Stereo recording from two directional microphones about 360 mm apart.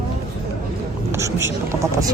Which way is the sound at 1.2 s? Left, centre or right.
Centre.